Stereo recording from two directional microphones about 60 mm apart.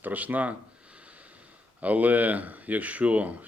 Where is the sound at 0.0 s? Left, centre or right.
Right.